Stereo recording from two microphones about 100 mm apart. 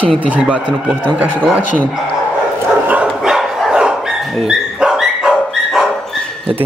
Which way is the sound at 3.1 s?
Centre (ahead or behind).